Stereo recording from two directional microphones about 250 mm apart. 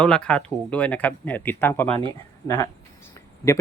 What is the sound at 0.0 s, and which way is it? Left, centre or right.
Speech, centre.